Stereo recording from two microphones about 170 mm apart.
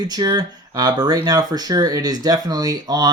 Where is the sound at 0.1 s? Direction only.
25° right (ahead or behind).